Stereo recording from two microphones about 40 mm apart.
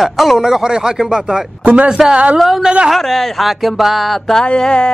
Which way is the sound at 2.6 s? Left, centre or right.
Right.